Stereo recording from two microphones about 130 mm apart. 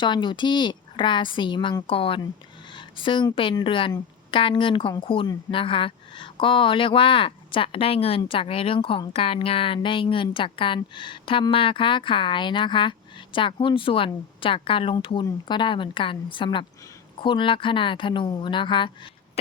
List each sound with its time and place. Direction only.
0.0 s a woman's voice: 35° left (ahead or behind)